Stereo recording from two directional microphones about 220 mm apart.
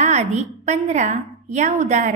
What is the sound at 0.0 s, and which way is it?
A woman's voice, 30° right (ahead or behind).